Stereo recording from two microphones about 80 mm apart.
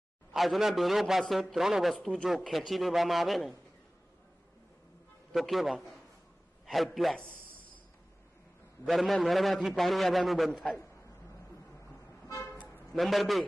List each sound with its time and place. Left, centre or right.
0.3 s a man's voice: centre
2.0 s a man's voice: centre
5.3 s a man's voice: centre
8.8 s a man's voice: centre
12.3 s toot: left
12.9 s a man's voice: centre